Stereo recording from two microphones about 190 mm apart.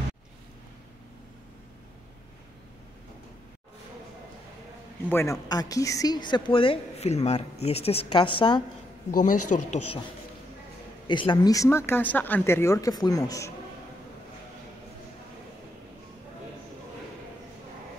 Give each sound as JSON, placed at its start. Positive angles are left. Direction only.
{"t": 5.1, "sound": "speech", "side_deg": 15}
{"t": 9.1, "sound": "speech", "side_deg": 45}
{"t": 11.1, "sound": "speech", "side_deg": 25}